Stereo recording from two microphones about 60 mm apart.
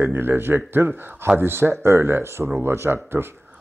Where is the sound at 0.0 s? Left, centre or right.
Right.